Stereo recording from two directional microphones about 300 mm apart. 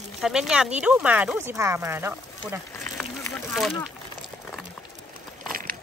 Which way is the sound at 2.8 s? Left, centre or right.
Centre.